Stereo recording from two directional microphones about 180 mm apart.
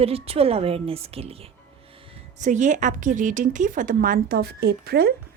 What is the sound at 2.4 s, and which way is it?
A woman's voice, 40° right (ahead or behind).